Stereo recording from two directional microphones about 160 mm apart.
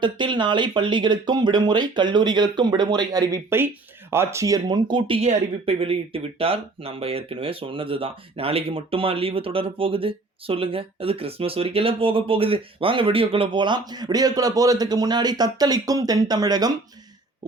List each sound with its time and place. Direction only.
0.0 s speech: 30° right (ahead or behind)